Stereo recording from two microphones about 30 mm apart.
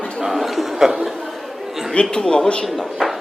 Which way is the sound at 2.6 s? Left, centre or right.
Centre.